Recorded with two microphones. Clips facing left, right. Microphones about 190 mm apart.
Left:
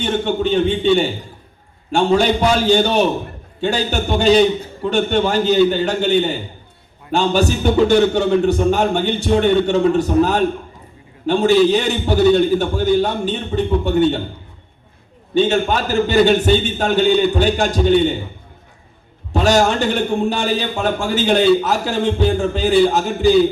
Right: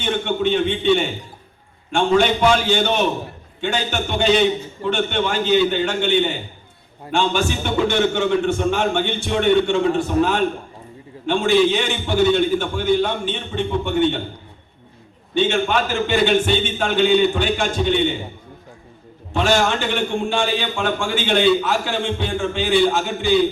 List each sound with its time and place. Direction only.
0.0 s a man's voice: 35° left (ahead or behind)
15.4 s a man's voice: 40° left (ahead or behind)
19.3 s a man's voice: 40° left (ahead or behind)